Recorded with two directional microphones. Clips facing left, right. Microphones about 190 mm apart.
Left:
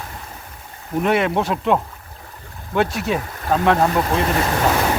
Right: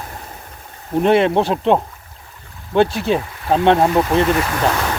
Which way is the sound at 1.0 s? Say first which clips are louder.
Right 5 dB; 30° right (ahead or behind).